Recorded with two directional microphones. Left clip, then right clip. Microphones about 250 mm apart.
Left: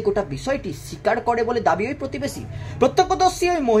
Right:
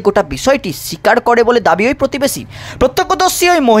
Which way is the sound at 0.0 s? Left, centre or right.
Right.